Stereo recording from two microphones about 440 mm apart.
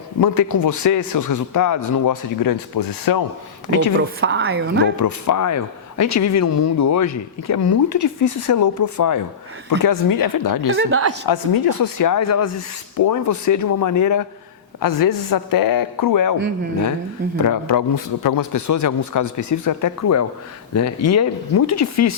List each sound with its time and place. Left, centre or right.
0.2 s a man's voice: left
4.2 s a woman's voice: right
4.9 s a man's voice: left
10.8 s a woman's voice: right
11.3 s a woman's voice: left
17.3 s a man's voice: left